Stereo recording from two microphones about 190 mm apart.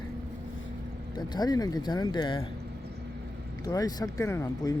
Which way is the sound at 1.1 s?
20° left (ahead or behind).